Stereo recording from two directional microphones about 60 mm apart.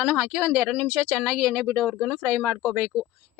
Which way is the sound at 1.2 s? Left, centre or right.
Right.